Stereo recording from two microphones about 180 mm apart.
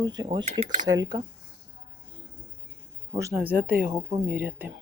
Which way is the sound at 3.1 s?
15° right (ahead or behind).